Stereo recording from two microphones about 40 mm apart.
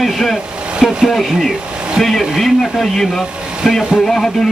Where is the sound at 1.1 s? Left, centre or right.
Centre.